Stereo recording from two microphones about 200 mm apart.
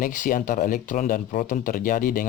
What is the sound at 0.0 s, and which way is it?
Speech, 40° left (ahead or behind).